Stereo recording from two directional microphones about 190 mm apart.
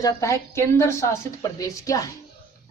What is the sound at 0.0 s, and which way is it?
Speech, 15° left (ahead or behind).